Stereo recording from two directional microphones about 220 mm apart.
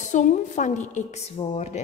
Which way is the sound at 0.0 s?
35° left (ahead or behind).